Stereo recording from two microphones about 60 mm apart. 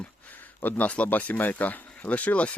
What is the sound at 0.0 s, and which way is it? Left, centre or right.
Speech, left.